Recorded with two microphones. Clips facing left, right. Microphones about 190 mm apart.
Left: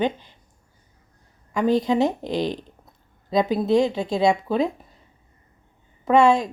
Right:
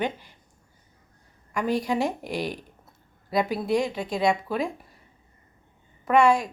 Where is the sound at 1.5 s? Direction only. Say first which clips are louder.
Left 5 dB; 25° left (ahead or behind).